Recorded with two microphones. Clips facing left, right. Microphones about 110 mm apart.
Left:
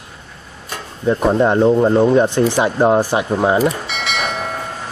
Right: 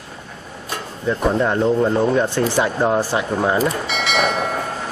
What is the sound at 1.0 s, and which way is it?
Speech, 25° left (ahead or behind).